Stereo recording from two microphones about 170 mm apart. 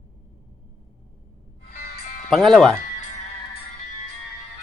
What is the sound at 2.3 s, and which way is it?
Speech, centre (ahead or behind).